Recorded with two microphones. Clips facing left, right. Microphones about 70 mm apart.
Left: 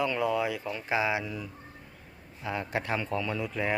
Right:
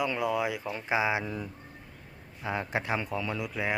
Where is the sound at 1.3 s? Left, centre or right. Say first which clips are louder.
Right 2 dB; right.